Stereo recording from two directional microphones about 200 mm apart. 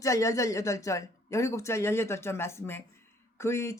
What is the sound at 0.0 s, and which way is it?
Speech, 15° left (ahead or behind).